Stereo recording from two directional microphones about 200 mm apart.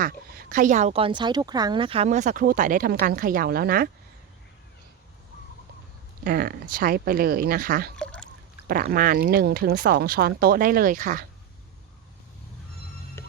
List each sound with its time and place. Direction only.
0.0 s speech: 45° right (ahead or behind)
6.2 s speech: 45° right (ahead or behind)
7.9 s a sound: 5° left (ahead or behind)
8.6 s speech: 45° right (ahead or behind)